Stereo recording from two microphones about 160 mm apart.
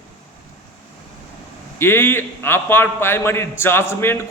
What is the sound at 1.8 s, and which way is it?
A man's voice, 15° left (ahead or behind).